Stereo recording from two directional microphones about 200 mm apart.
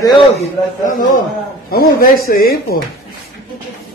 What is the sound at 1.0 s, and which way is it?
A man's voice, 40° left (ahead or behind).